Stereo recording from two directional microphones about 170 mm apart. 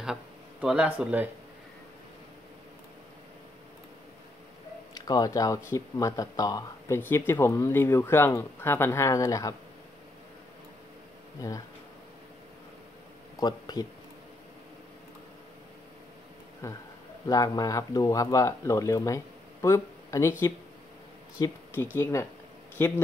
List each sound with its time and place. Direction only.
0.0 s speech: centre (ahead or behind)
5.0 s speech: 20° left (ahead or behind)
13.4 s speech: 25° left (ahead or behind)
16.6 s speech: 15° left (ahead or behind)